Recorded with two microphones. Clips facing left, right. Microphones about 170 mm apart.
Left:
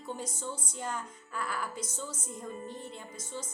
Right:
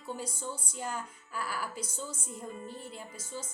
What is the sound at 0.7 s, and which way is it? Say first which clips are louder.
A woman's voice: even; 10° right (ahead or behind).